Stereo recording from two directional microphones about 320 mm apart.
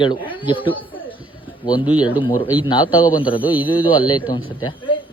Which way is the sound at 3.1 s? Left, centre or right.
Centre.